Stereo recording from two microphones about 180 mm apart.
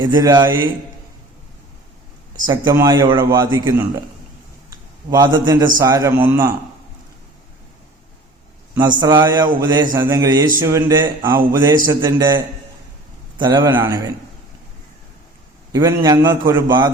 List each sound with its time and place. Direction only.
0.0 s speech: 20° right (ahead or behind)
2.5 s speech: 20° right (ahead or behind)
5.1 s a man's voice: 20° right (ahead or behind)
9.0 s speech: 20° right (ahead or behind)
13.4 s speech: 25° right (ahead or behind)
15.7 s speech: 20° right (ahead or behind)